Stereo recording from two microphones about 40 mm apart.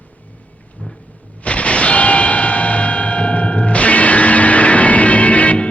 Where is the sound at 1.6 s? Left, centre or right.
Left.